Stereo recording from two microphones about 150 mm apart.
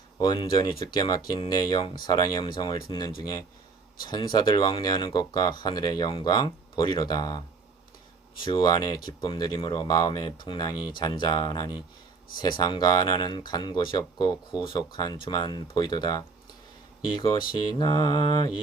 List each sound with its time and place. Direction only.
0.2 s speech: 30° left (ahead or behind)